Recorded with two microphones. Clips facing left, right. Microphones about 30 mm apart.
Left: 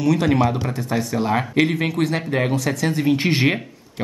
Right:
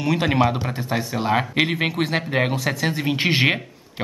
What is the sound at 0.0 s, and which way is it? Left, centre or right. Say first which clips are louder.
Speech: left 2 dB; right.